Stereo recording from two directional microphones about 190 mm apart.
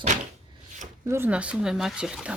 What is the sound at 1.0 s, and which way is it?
Speech, 10° right (ahead or behind).